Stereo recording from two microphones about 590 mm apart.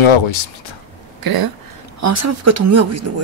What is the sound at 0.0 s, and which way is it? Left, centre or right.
Speech, left.